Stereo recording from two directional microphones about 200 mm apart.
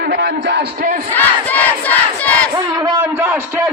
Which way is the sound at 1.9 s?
5° left (ahead or behind).